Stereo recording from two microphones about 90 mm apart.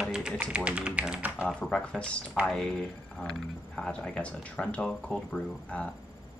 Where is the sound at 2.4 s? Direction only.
15° right (ahead or behind).